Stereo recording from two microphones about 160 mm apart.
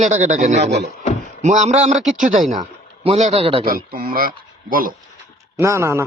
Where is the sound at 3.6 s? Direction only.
65° right (ahead or behind).